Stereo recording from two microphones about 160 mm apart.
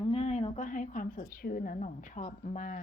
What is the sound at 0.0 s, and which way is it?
A woman's voice, 35° left (ahead or behind).